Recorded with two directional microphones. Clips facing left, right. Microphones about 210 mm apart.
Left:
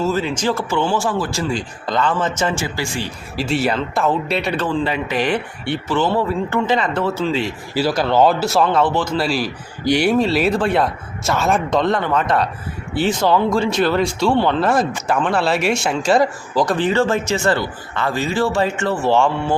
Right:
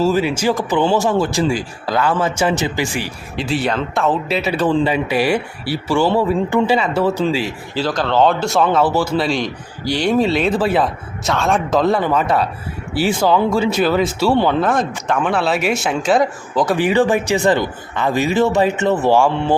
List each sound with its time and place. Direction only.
0.0 s speech: 10° right (ahead or behind)
3.3 s speech: centre (ahead or behind)
7.7 s speech: 10° left (ahead or behind)
9.8 s speech: 15° left (ahead or behind)
10.1 s speech: centre (ahead or behind)
14.6 s speech: centre (ahead or behind)
16.7 s speech: 15° right (ahead or behind)